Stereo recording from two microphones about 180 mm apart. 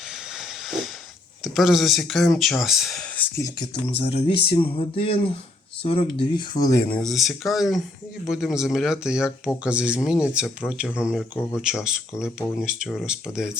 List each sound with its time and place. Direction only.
0.1 s a sound: centre (ahead or behind)
1.4 s speech: centre (ahead or behind)
4.0 s speech: 30° left (ahead or behind); by 7.0 s 15° left (ahead or behind)
7.0 s speech: centre (ahead or behind)